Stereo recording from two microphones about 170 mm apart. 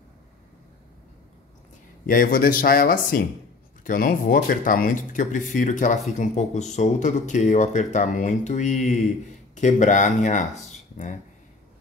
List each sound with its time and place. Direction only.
2.0 s speech: 55° left (ahead or behind)